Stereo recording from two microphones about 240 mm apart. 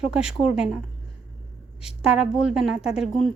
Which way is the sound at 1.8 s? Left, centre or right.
Centre.